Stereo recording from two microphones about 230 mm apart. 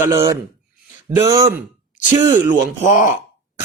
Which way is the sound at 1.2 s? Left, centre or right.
Centre.